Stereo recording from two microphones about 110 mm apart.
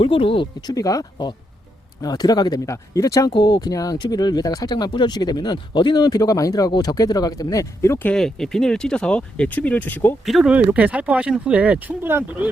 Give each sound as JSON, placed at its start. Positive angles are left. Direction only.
{"t": 0.0, "sound": "speech", "side_deg": 55}
{"t": 0.7, "sound": "speech", "side_deg": 30}
{"t": 8.1, "sound": "speech", "side_deg": 5}
{"t": 10.2, "sound": "speech", "side_deg": 0}
{"t": 10.5, "sound": "speech", "side_deg": -10}